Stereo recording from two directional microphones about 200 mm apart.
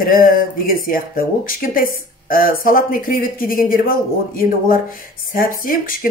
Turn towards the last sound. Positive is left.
turn(degrees=45)  # may be behind; listen again after turning